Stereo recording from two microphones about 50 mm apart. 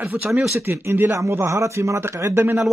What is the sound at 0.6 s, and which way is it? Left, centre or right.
Speech, right.